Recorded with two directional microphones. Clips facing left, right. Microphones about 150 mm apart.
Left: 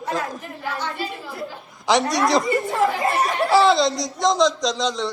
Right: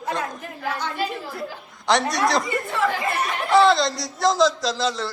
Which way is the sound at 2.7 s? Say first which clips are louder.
Left 1 dB; 40° left (ahead or behind).